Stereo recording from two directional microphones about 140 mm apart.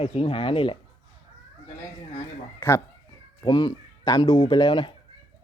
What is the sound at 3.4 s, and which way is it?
Speech, 30° left (ahead or behind).